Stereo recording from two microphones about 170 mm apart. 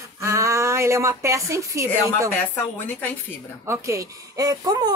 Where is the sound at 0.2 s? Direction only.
15° right (ahead or behind).